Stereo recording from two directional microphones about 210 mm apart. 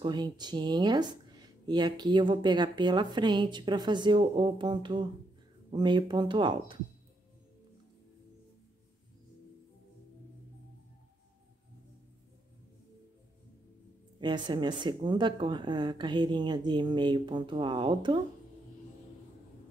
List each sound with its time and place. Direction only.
0.0 s speech: 20° right (ahead or behind)
14.2 s speech: 20° right (ahead or behind)